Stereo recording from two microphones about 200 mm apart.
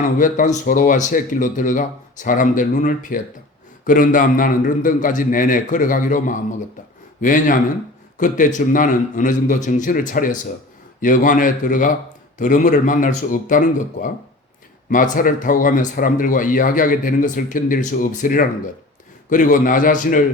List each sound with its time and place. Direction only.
0.0 s a man's voice: 40° left (ahead or behind)